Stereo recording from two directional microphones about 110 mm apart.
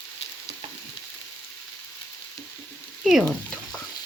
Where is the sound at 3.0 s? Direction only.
5° right (ahead or behind).